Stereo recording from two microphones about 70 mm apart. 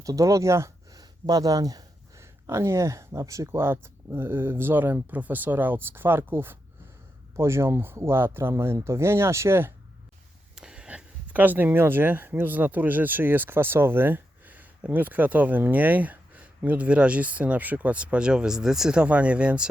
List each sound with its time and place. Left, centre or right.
0.0 s speech: right
10.5 s speech: centre